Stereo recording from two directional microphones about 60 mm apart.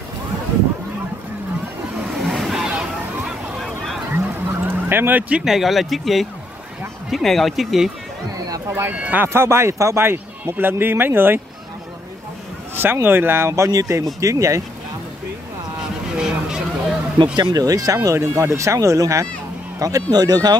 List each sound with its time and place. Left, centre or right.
2.2 s vehicle: centre
4.5 s vehicle: right
5.5 s speech: centre
8.9 s speech: right
9.2 s speech: right
10.0 s speech: right
12.7 s speech: right
13.5 s speech: right
16.2 s a sound: centre
17.6 s speech: right
17.9 s speech: right
19.8 s speech: right